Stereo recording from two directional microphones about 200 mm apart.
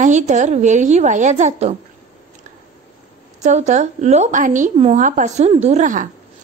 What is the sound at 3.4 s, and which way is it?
Speech, 35° right (ahead or behind).